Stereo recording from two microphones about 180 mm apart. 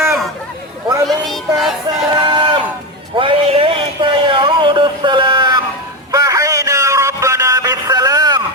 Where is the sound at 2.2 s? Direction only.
25° right (ahead or behind).